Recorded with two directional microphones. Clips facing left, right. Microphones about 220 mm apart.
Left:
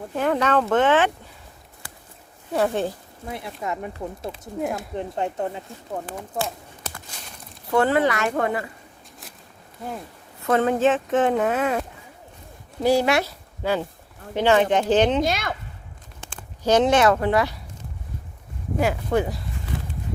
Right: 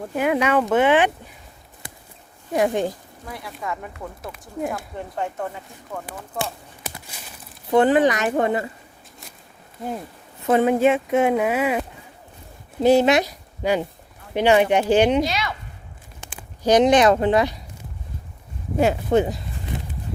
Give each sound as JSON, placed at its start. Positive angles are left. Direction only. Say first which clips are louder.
{"t": 0.2, "sound": "speech", "louder": "right 1 dB", "side_deg": -10}
{"t": 2.5, "sound": "speech", "louder": "right 2 dB", "side_deg": -15}
{"t": 3.2, "sound": "speech", "louder": "left 1 dB", "side_deg": 25}
{"t": 6.8, "sound": "walk", "louder": "right 2 dB", "side_deg": -10}
{"t": 7.7, "sound": "speech", "louder": "right 3 dB", "side_deg": -20}
{"t": 10.4, "sound": "speech", "louder": "right 2 dB", "side_deg": -15}
{"t": 12.8, "sound": "speech", "louder": "right 4 dB", "side_deg": -20}
{"t": 15.2, "sound": "speech", "louder": "even", "side_deg": 50}
{"t": 16.2, "sound": "speech", "louder": "right 2 dB", "side_deg": -15}
{"t": 18.8, "sound": "speech", "louder": "right 4 dB", "side_deg": -25}